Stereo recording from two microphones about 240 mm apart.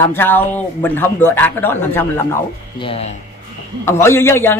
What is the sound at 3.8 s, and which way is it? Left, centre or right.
Speech, centre.